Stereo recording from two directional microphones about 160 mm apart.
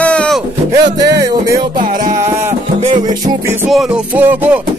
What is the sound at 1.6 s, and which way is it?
Music, 55° right (ahead or behind).